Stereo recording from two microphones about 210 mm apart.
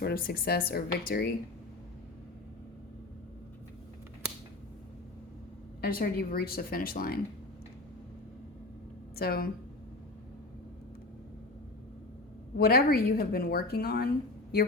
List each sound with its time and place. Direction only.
0.0 s a woman's voice: 45° left (ahead or behind)
5.8 s a woman's voice: 45° left (ahead or behind)
9.1 s a woman's voice: 45° left (ahead or behind)
12.5 s a woman's voice: 45° left (ahead or behind)